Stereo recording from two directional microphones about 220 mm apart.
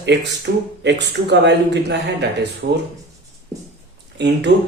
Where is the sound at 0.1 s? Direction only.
50° right (ahead or behind).